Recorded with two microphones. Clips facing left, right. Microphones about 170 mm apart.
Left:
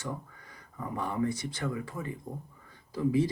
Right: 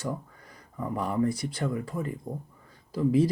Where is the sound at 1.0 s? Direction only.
35° right (ahead or behind).